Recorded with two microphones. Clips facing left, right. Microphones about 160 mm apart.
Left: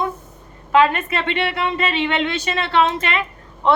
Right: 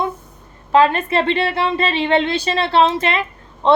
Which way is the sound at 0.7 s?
30° right (ahead or behind).